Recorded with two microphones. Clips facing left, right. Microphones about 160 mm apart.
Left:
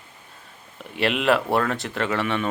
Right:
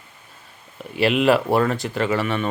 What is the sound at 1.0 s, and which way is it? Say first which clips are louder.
Speech: right 4 dB; 5° right (ahead or behind).